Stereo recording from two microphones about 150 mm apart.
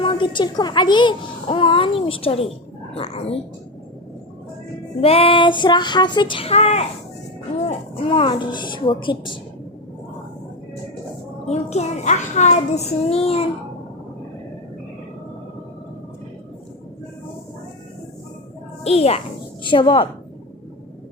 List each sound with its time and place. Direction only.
0.0 s a child's voice: 35° left (ahead or behind)
4.9 s a child's voice: 40° left (ahead or behind)
8.0 s a child's voice: 35° left (ahead or behind)
11.4 s a child's voice: 45° left (ahead or behind)
18.8 s a child's voice: 45° left (ahead or behind)